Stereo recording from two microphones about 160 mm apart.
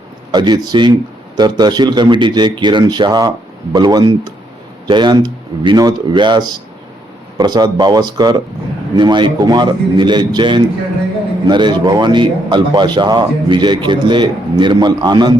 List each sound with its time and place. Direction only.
0.3 s speech: 25° right (ahead or behind)